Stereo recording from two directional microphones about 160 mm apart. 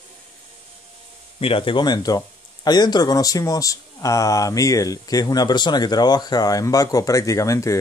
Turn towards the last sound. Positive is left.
turn(degrees=20)  # may be behind; listen again after turning